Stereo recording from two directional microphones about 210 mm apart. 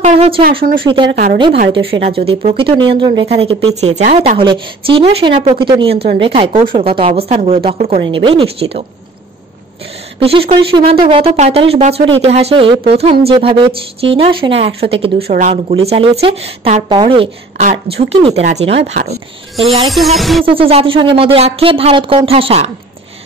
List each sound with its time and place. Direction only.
0.0 s a sound: 30° right (ahead or behind)
0.9 s speech: 25° right (ahead or behind)
5.3 s speech: 35° right (ahead or behind)
5.6 s speech: 25° right (ahead or behind)
10.2 s speech: 25° right (ahead or behind)
19.9 s a sound: centre (ahead or behind)
20.4 s speech: 25° right (ahead or behind)